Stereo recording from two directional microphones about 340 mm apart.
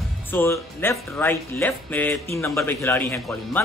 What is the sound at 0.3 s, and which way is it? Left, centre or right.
A man's voice, centre.